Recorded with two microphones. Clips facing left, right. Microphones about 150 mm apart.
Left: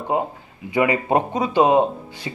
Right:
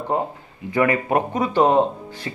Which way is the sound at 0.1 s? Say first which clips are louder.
Left 2 dB; 10° left (ahead or behind).